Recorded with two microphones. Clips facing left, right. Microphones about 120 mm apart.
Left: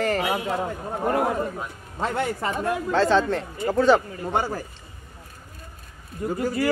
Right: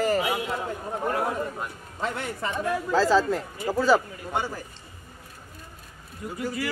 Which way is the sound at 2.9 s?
5° right (ahead or behind).